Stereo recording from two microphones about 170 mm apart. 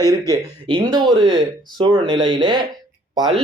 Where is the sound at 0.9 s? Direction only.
25° right (ahead or behind).